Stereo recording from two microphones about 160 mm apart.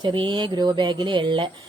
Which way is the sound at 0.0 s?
30° right (ahead or behind).